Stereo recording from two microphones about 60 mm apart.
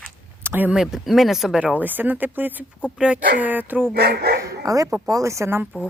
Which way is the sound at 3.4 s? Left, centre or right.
Right.